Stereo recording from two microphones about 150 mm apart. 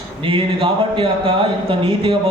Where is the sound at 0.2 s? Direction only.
35° right (ahead or behind).